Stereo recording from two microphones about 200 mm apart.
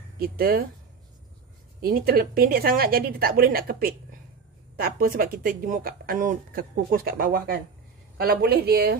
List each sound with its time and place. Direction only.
0.2 s speech: 50° right (ahead or behind)
1.8 s speech: 45° right (ahead or behind)